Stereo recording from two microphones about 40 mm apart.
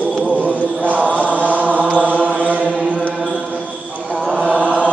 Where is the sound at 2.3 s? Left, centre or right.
Right.